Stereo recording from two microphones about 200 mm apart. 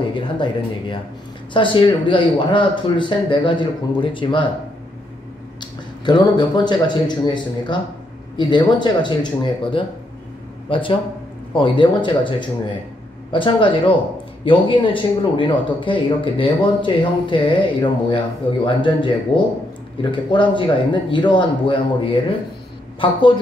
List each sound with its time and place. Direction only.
0.0 s speech: 25° left (ahead or behind)
5.6 s speech: 20° left (ahead or behind)